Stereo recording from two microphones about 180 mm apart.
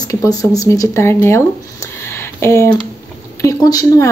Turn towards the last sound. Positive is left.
turn(degrees=20)  # may be behind; listen again after turning